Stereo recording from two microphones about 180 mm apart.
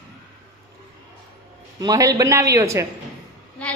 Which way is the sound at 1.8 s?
20° right (ahead or behind).